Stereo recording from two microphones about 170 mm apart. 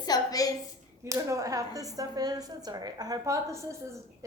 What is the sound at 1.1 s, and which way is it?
A woman's voice, 20° right (ahead or behind).